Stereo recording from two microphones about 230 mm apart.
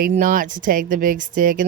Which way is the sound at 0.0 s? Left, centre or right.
Right.